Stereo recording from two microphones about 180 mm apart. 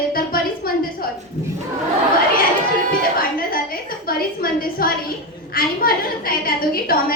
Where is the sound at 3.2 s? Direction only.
55° left (ahead or behind).